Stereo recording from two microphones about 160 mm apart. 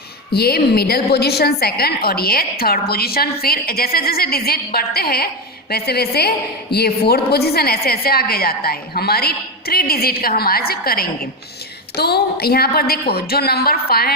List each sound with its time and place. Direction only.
0.3 s a woman's voice: 75° left (ahead or behind)
11.9 s a woman's voice: 85° left